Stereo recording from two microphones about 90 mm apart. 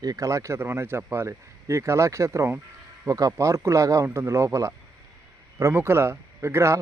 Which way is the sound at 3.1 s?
40° right (ahead or behind).